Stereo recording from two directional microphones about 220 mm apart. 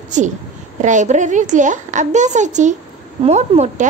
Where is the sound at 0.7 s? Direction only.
35° right (ahead or behind).